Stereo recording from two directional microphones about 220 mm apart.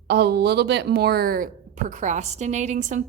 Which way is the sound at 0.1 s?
50° right (ahead or behind).